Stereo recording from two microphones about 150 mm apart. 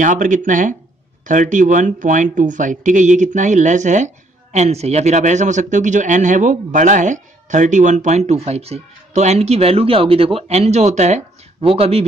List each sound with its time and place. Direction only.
0.0 s speech: 60° right (ahead or behind); by 12.1 s 40° right (ahead or behind)